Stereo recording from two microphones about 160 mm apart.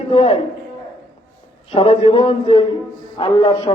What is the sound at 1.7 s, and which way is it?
A man's voice, 35° left (ahead or behind).